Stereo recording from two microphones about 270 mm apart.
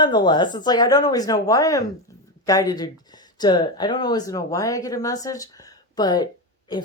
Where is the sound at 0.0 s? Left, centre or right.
Centre.